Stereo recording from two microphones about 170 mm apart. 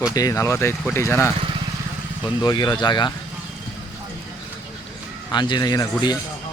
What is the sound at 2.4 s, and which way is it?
Speech, 25° left (ahead or behind).